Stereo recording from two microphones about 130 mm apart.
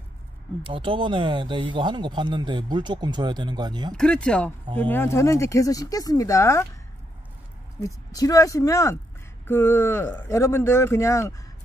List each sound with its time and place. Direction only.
0.7 s speech: 40° right (ahead or behind)
3.9 s speech: 5° left (ahead or behind); by 6.7 s 20° left (ahead or behind)
7.8 s speech: 25° left (ahead or behind)